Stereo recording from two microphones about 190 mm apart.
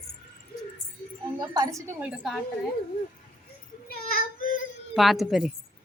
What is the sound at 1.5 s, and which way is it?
Speech, 15° right (ahead or behind).